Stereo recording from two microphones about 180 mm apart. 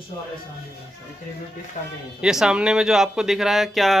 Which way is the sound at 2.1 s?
5° right (ahead or behind).